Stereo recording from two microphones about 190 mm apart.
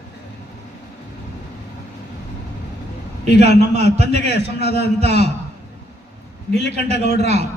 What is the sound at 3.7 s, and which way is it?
A man's voice, 35° right (ahead or behind).